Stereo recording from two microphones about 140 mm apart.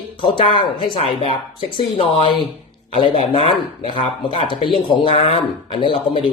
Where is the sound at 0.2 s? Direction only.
40° left (ahead or behind).